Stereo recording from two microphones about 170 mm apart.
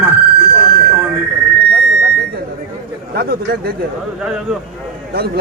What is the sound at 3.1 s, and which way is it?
Chatter, 65° right (ahead or behind).